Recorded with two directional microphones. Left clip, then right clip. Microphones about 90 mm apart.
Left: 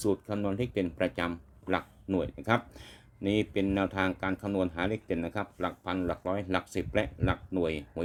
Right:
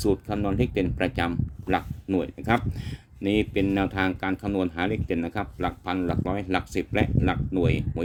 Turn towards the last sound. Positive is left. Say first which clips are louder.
# right 5 dB
turn(degrees=-25)  # may be behind; listen again after turning